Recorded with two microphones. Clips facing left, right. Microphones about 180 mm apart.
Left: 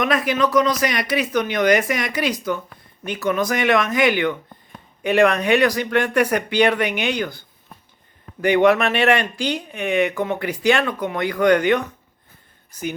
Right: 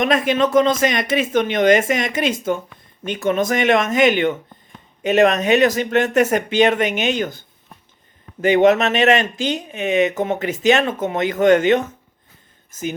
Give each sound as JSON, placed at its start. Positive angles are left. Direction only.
{"t": 0.0, "sound": "speech", "side_deg": -25}
{"t": 8.4, "sound": "speech", "side_deg": -20}